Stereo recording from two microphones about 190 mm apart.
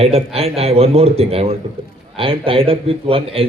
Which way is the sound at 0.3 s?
30° right (ahead or behind).